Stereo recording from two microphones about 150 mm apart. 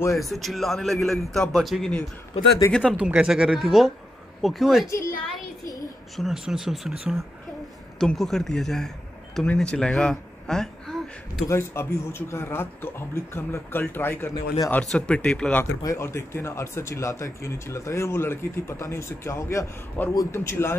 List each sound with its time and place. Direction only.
0.2 s a man's voice: centre (ahead or behind)
6.1 s a man's voice: centre (ahead or behind)
11.4 s speech: 15° left (ahead or behind)
15.8 s speech: 20° left (ahead or behind)